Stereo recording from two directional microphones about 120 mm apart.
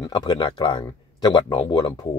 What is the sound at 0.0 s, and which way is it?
Speech, 40° left (ahead or behind).